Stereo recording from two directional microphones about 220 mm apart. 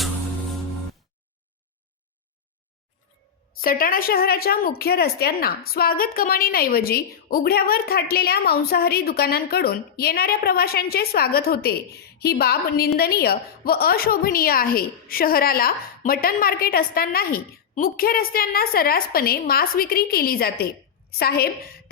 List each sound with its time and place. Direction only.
3.6 s a woman's voice: 40° left (ahead or behind)